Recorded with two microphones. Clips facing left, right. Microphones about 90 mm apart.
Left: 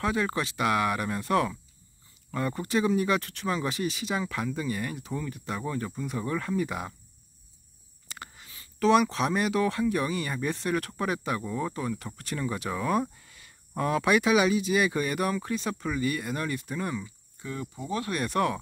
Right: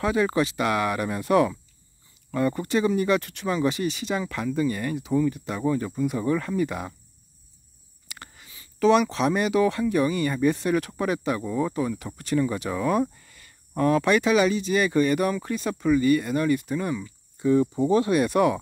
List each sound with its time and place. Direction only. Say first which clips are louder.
0.0 s speech: right 5 dB; centre (ahead or behind)
8.2 s speech: left 2 dB; centre (ahead or behind)
17.4 s speech: right 16 dB; 25° right (ahead or behind)
18.1 s speech: right 7 dB; 5° right (ahead or behind)